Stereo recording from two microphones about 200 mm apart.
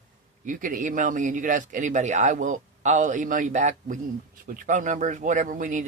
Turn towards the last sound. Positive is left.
turn(degrees=-40)  # may be behind; listen again after turning